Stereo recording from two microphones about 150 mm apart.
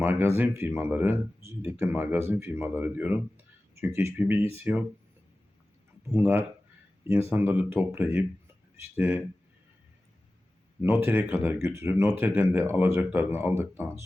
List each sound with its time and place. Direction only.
0.0 s speech: 15° right (ahead or behind)
6.1 s speech: 15° right (ahead or behind)
10.8 s speech: 15° right (ahead or behind)